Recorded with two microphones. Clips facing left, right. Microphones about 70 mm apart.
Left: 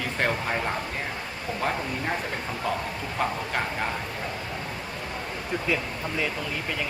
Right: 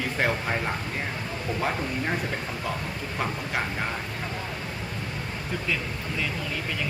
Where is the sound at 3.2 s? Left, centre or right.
Centre.